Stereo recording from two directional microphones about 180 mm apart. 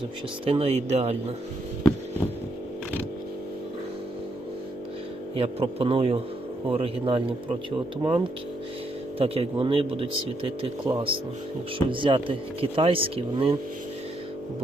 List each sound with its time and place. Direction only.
0.4 s speech: 30° right (ahead or behind)
5.4 s speech: 30° right (ahead or behind)